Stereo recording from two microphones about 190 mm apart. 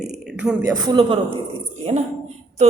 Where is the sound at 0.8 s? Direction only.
25° right (ahead or behind).